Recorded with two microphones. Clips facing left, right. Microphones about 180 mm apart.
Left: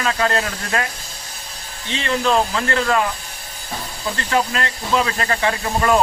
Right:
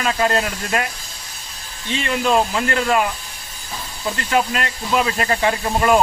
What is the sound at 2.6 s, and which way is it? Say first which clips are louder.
Speech: even; 20° right (ahead or behind).